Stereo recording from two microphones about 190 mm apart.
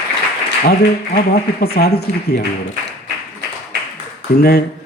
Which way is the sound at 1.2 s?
55° left (ahead or behind).